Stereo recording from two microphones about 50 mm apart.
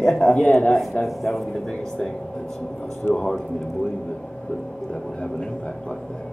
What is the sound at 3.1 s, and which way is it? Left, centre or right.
Speech, centre.